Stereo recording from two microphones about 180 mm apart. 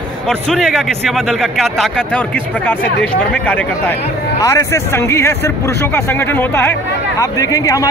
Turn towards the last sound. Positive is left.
turn(degrees=20)  # may be behind; listen again after turning